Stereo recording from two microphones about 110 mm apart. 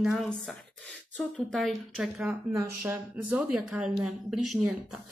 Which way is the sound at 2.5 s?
25° right (ahead or behind).